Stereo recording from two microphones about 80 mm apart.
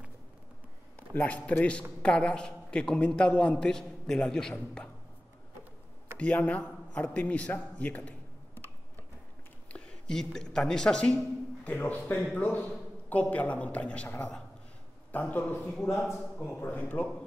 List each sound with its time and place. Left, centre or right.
0.9 s a man's voice: centre
6.1 s a man's voice: centre
9.7 s a woman's voice: centre